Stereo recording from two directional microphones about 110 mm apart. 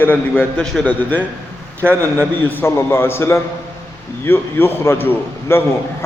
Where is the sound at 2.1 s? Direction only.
15° left (ahead or behind).